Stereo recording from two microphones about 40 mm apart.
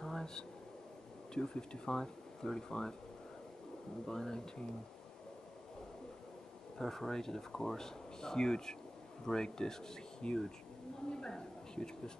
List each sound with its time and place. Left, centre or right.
0.0 s a sound: centre
1.3 s speech: left
4.1 s speech: centre
6.8 s a woman's voice: centre